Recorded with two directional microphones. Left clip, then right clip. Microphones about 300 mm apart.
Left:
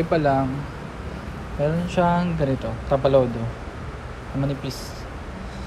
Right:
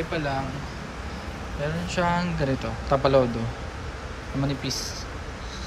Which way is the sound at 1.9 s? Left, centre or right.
Centre.